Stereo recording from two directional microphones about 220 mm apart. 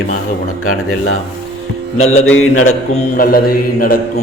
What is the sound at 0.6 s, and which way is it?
Speech, 75° left (ahead or behind).